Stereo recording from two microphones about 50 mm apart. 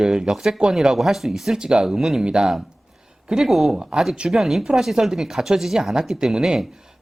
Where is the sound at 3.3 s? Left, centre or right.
Centre.